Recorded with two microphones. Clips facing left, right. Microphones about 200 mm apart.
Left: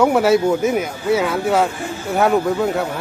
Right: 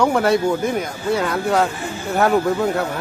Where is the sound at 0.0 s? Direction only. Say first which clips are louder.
Left 3 dB; 5° left (ahead or behind).